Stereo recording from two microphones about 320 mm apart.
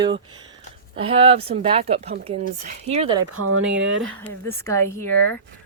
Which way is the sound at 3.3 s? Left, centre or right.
Right.